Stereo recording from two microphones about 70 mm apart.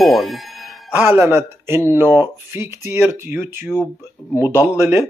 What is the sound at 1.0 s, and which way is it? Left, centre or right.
Speech, right.